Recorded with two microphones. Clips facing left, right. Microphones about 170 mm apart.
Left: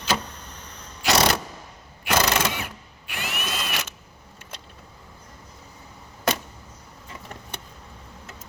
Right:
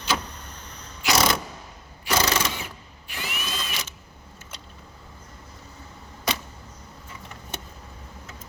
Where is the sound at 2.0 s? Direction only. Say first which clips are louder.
Left 2 dB; 65° left (ahead or behind).